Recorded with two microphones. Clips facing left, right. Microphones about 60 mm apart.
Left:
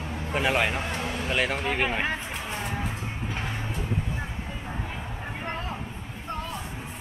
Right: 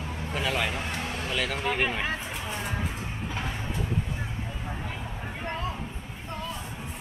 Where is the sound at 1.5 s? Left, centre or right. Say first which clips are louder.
Left 1 dB; centre.